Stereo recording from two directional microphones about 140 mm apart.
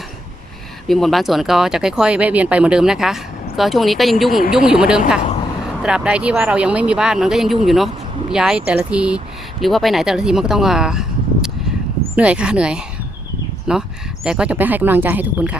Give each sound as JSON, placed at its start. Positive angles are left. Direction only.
{"t": 0.9, "sound": "speech", "side_deg": 0}
{"t": 12.1, "sound": "speech", "side_deg": -10}